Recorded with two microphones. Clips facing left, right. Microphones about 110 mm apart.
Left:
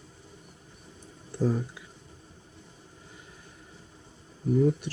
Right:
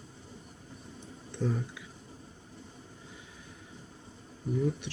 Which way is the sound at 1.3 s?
35° left (ahead or behind).